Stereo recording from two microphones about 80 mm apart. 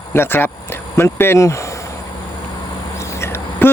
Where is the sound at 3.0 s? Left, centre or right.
Left.